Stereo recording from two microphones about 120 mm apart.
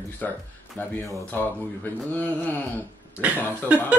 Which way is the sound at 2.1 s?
10° left (ahead or behind).